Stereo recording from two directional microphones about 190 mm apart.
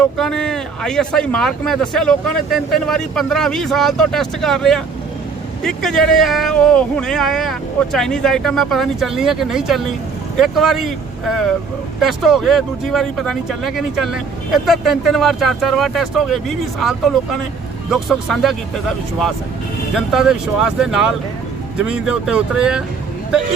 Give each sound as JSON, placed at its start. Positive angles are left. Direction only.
{"t": 0.2, "sound": "a man's voice", "side_deg": 5}